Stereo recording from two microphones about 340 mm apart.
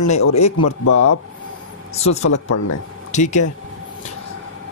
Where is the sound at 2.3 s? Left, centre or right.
Left.